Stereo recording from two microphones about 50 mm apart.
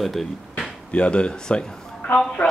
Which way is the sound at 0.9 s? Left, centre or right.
Left.